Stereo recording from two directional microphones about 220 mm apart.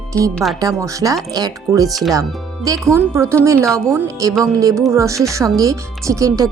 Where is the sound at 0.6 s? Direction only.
15° right (ahead or behind).